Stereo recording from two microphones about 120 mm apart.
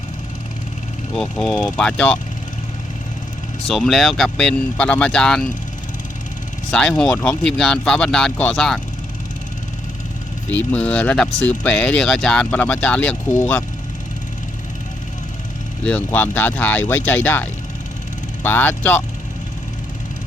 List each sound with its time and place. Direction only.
1.1 s speech: centre (ahead or behind)
3.7 s speech: centre (ahead or behind)
6.7 s speech: 5° left (ahead or behind)
10.5 s speech: 10° left (ahead or behind)
13.2 s speech: 30° left (ahead or behind)
15.8 s speech: 10° left (ahead or behind)